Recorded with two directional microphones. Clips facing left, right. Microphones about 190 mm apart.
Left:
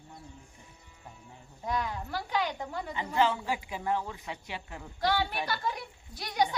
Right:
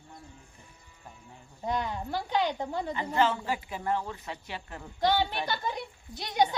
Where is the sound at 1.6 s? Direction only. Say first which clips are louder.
Right 2 dB; 25° right (ahead or behind).